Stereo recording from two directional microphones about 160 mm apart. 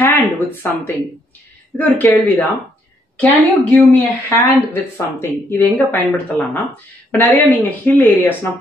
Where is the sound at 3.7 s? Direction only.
15° left (ahead or behind).